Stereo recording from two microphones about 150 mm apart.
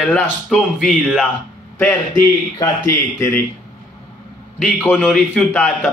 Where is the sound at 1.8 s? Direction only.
10° left (ahead or behind).